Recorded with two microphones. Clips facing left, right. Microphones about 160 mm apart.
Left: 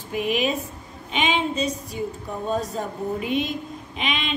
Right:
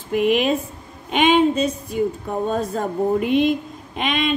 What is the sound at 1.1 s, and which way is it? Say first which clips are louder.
Speech: right 8 dB; 55° right (ahead or behind).